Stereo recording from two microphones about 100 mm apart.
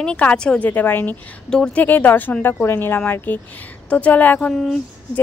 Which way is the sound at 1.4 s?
5° left (ahead or behind).